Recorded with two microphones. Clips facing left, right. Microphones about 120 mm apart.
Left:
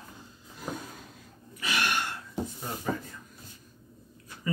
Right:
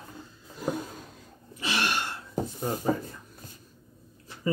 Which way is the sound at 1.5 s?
25° right (ahead or behind).